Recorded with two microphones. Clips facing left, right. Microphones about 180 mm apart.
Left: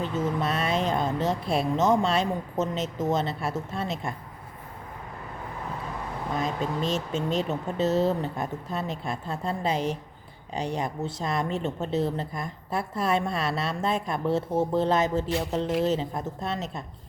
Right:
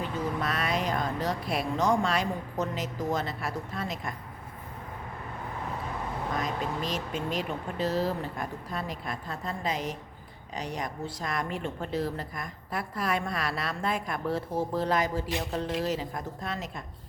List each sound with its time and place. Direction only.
0.0 s speech: 25° left (ahead or behind)
6.3 s a woman's voice: 25° left (ahead or behind)